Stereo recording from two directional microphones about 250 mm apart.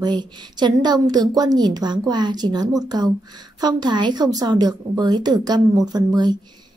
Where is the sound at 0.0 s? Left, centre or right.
Centre.